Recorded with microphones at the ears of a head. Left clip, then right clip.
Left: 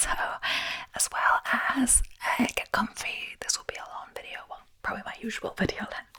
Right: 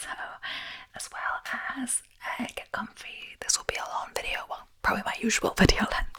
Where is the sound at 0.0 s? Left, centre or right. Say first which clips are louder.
Left 7 dB; left.